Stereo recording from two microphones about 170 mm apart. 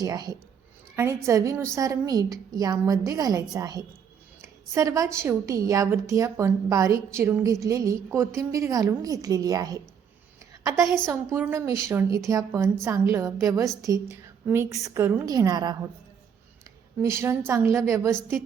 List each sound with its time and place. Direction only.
0.0 s a woman's voice: 25° right (ahead or behind)
17.0 s a woman's voice: 15° right (ahead or behind)